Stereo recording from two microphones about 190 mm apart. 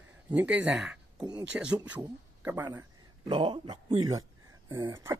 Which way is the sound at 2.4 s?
10° right (ahead or behind).